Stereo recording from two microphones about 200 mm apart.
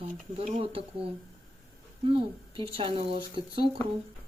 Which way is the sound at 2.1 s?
25° right (ahead or behind).